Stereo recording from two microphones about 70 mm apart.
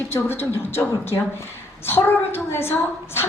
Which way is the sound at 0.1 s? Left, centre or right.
Left.